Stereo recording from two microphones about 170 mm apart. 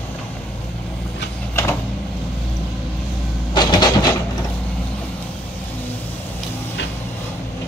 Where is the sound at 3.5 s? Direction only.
25° left (ahead or behind).